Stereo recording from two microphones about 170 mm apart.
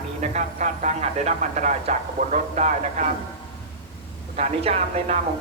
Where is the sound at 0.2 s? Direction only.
45° right (ahead or behind).